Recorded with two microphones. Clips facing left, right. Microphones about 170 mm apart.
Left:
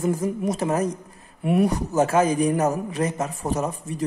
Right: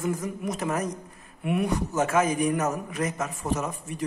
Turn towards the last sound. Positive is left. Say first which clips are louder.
# left 3 dB
turn(degrees=35)  # may be behind; listen again after turning